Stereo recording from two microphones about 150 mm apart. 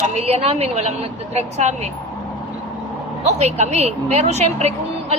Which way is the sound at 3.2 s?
45° right (ahead or behind).